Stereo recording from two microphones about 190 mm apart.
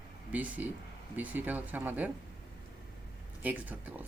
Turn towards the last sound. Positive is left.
turn(degrees=-10)  # may be behind; listen again after turning